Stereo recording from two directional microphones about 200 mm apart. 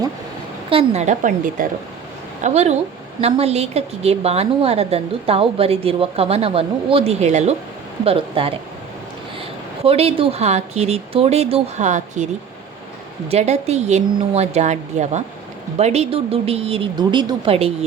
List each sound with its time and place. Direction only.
0.7 s a woman's voice: 30° right (ahead or behind)
9.8 s a woman's voice: 30° right (ahead or behind)
13.3 s a woman's voice: 35° right (ahead or behind)